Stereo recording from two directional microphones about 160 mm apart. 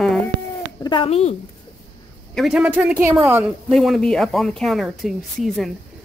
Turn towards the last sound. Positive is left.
turn(degrees=0)  # may be behind; listen again after turning